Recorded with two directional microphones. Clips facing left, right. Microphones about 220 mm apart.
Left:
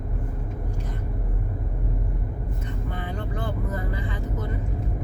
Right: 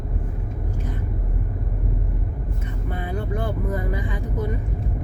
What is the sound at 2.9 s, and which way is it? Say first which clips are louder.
Vehicle: right 7 dB; 10° right (ahead or behind).